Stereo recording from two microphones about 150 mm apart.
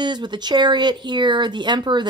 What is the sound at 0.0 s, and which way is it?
Speech, 30° right (ahead or behind).